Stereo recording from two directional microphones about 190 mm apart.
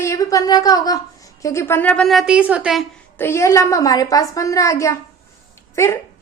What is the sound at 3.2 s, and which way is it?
A woman's voice, 15° left (ahead or behind).